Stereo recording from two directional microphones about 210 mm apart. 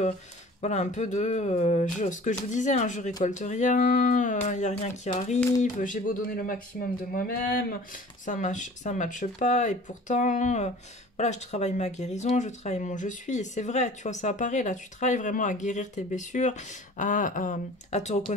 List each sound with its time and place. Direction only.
0.6 s speech: 35° left (ahead or behind)